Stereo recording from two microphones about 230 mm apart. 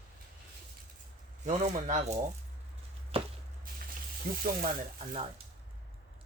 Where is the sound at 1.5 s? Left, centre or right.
Right.